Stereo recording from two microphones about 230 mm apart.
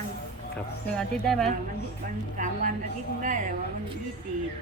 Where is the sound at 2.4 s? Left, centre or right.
Right.